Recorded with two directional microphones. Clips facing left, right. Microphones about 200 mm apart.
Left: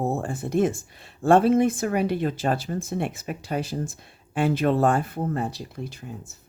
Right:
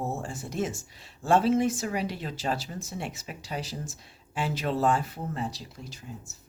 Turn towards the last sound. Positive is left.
turn(degrees=60)  # may be behind; listen again after turning